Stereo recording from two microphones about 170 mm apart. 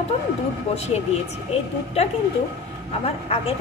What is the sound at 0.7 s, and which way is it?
Speech, 40° left (ahead or behind).